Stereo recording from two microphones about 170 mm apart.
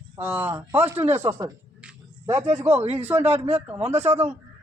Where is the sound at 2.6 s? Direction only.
15° right (ahead or behind).